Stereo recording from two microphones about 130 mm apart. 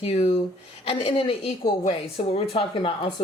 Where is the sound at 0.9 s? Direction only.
40° left (ahead or behind).